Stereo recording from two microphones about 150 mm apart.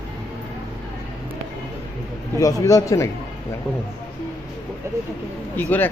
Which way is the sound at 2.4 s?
25° left (ahead or behind).